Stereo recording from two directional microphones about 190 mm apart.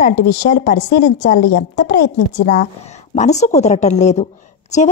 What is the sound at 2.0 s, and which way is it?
Speech, 65° left (ahead or behind).